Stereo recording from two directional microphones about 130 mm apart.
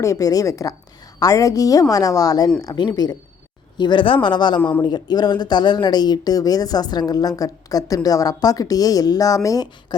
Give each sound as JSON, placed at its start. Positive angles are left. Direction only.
{"t": 0.0, "sound": "speech", "side_deg": 25}